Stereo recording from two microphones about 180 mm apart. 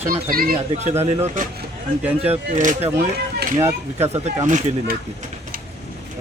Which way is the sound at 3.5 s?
15° right (ahead or behind).